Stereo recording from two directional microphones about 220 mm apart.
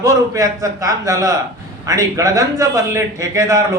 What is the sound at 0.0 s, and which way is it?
A man's voice, 15° right (ahead or behind).